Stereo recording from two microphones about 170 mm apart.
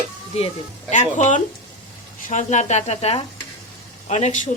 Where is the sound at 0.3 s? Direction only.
40° left (ahead or behind).